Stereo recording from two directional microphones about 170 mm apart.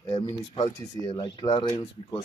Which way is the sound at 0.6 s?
30° left (ahead or behind).